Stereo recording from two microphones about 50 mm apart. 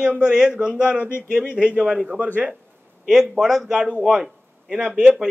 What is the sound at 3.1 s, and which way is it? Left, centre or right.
A man's voice, centre.